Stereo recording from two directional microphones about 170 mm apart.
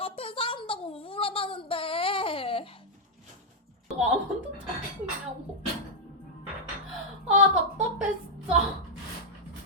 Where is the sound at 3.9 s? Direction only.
5° right (ahead or behind).